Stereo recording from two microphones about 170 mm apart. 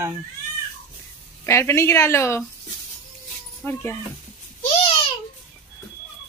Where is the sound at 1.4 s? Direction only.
15° left (ahead or behind).